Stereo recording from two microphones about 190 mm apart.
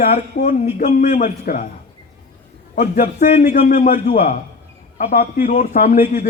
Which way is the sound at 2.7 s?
45° left (ahead or behind).